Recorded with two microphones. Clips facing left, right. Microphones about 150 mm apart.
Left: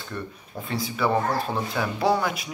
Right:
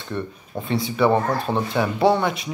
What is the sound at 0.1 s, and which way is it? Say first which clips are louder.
Speech: right 6 dB; 25° right (ahead or behind).